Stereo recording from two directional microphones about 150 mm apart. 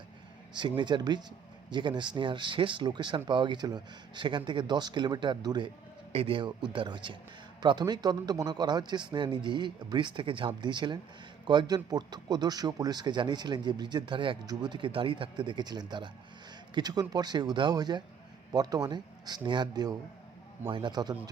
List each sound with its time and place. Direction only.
0.5 s speech: 30° right (ahead or behind)